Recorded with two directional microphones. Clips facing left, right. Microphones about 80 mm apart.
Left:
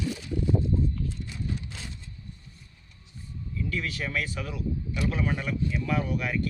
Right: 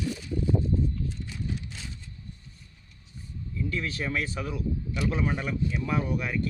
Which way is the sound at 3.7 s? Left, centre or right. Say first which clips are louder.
Right 1 dB; right.